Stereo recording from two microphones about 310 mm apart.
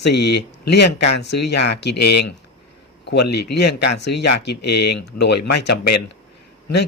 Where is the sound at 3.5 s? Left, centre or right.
Left.